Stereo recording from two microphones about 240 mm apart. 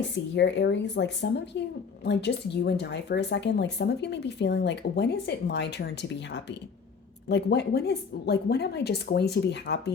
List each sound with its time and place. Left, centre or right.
0.3 s speech: left